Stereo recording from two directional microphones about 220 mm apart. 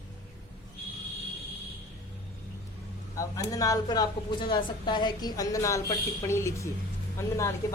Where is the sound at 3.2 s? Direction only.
15° left (ahead or behind).